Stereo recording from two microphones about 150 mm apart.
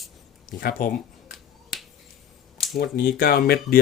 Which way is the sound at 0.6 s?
70° left (ahead or behind).